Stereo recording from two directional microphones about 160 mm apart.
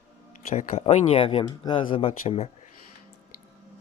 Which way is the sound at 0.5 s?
45° left (ahead or behind).